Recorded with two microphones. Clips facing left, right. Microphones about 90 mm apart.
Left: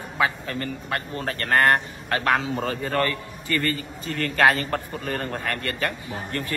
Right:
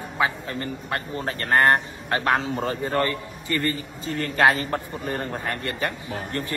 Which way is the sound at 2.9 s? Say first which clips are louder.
Even; 20° right (ahead or behind).